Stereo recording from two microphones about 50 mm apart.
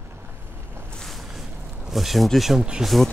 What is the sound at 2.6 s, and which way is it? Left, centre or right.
Speech, centre.